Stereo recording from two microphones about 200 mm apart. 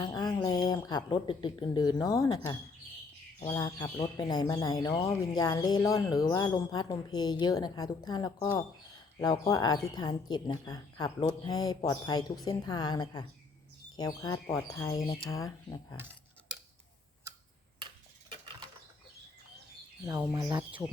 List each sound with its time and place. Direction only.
0.0 s speech: 20° left (ahead or behind)
20.3 s speech: 20° right (ahead or behind)